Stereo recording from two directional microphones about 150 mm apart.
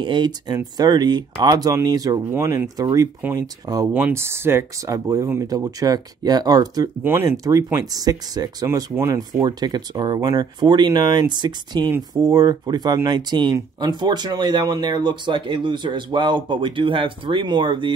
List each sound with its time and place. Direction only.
0.0 s speech: 30° right (ahead or behind)
7.0 s speech: 15° right (ahead or behind)
9.4 s speech: 30° right (ahead or behind)